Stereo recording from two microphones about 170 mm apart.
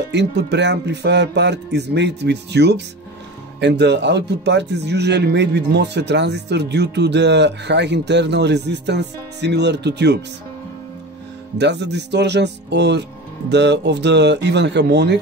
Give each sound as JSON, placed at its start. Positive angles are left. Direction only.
{"t": 0.1, "sound": "speech", "side_deg": -90}
{"t": 11.5, "sound": "speech", "side_deg": -90}